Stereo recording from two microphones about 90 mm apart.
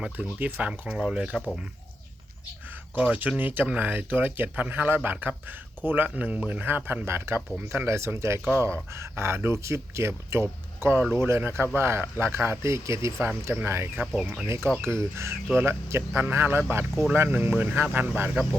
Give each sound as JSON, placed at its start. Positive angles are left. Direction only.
{"t": 0.0, "sound": "speech", "side_deg": -15}
{"t": 2.9, "sound": "speech", "side_deg": -15}
{"t": 14.0, "sound": "speech", "side_deg": -5}
{"t": 14.4, "sound": "speech", "side_deg": -30}